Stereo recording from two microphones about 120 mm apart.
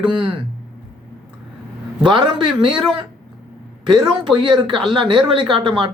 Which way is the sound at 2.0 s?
40° right (ahead or behind).